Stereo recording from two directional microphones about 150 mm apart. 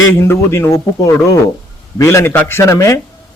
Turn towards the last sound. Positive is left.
turn(degrees=20)  # may be behind; listen again after turning